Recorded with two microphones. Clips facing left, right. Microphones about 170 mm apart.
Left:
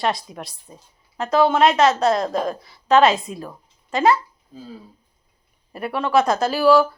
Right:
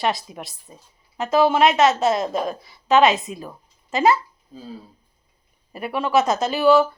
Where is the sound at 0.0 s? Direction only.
Centre (ahead or behind).